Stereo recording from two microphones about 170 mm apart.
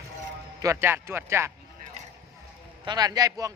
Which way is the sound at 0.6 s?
15° right (ahead or behind).